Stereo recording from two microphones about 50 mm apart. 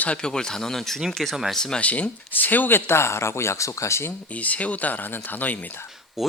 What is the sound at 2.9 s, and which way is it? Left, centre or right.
Speech, left.